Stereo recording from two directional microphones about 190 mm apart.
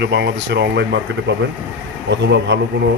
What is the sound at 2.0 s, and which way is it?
Speech, 65° right (ahead or behind).